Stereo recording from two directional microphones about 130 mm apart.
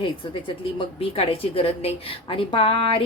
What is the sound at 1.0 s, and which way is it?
A woman's voice, 45° left (ahead or behind).